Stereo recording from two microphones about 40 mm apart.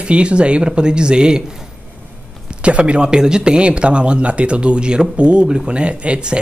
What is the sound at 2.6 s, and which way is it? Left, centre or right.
Speech, right.